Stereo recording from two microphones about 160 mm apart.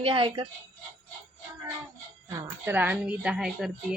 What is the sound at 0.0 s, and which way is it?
Speech, 35° right (ahead or behind).